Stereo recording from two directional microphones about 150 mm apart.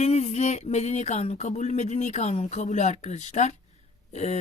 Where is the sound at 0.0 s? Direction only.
50° left (ahead or behind).